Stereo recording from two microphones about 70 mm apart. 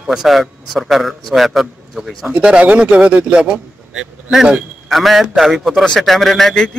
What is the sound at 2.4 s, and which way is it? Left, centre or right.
Speech, centre.